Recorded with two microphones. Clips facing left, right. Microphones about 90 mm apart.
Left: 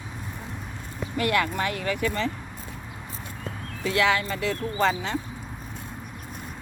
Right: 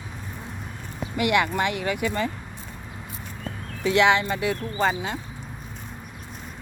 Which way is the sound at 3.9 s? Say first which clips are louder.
Right 4 dB; 20° right (ahead or behind).